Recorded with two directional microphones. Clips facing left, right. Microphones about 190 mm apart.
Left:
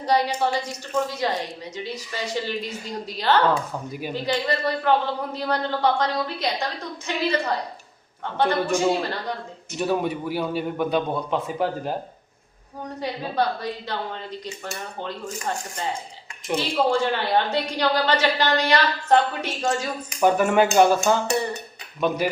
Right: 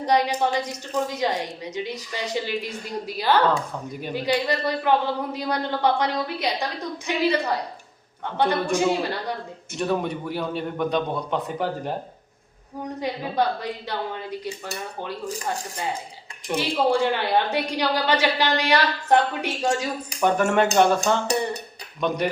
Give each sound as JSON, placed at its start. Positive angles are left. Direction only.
{"t": 0.0, "sound": "speech", "side_deg": -15}
{"t": 8.7, "sound": "speech", "side_deg": -15}
{"t": 9.7, "sound": "a man's voice", "side_deg": 5}
{"t": 13.0, "sound": "speech", "side_deg": -15}
{"t": 16.6, "sound": "speech", "side_deg": -15}
{"t": 20.2, "sound": "a man's voice", "side_deg": 5}